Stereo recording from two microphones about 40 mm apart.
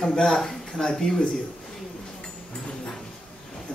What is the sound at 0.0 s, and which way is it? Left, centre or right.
Speech, centre.